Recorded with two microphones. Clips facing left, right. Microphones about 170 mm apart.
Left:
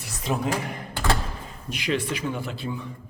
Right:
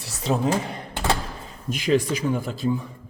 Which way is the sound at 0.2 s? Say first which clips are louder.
Right 4 dB; 30° right (ahead or behind).